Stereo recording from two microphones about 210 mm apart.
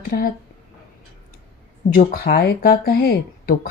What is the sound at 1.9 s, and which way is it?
Speech, 45° left (ahead or behind).